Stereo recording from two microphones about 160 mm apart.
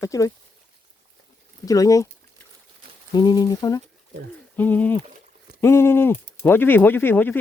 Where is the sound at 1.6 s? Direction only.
20° left (ahead or behind).